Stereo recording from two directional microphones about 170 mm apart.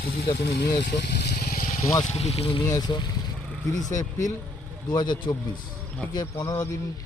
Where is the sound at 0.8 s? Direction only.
75° left (ahead or behind).